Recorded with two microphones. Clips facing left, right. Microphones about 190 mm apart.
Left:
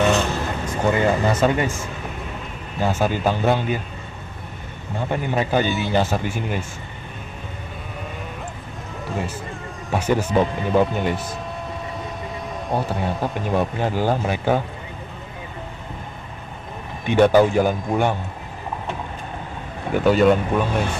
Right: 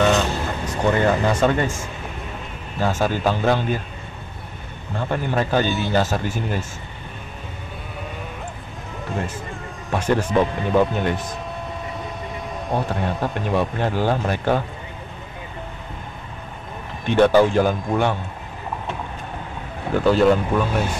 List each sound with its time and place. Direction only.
0.7 s speech: 10° left (ahead or behind)
2.8 s speech: 15° left (ahead or behind)
5.0 s speech: 10° left (ahead or behind)
5.7 s speech: centre (ahead or behind)
6.2 s speech: 10° left (ahead or behind)
9.1 s speech: centre (ahead or behind)
12.6 s speech: centre (ahead or behind)
17.0 s speech: 10° left (ahead or behind)
19.9 s speech: centre (ahead or behind)